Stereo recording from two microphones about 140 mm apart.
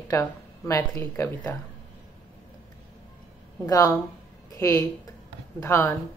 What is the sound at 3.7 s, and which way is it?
A woman's voice, 25° left (ahead or behind).